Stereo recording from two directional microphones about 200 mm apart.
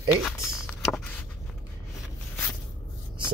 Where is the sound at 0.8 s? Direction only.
Centre (ahead or behind).